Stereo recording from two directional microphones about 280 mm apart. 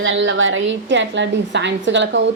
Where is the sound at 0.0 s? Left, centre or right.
Right.